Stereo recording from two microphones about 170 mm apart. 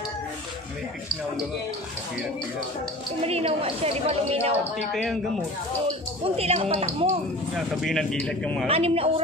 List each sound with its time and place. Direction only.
3.2 s a woman's voice: 35° right (ahead or behind)
4.7 s speech: centre (ahead or behind)
6.3 s a woman's voice: 35° right (ahead or behind)
7.5 s speech: centre (ahead or behind)
8.6 s a woman's voice: 35° right (ahead or behind)